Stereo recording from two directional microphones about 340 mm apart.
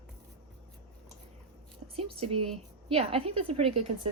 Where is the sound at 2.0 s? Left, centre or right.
Centre.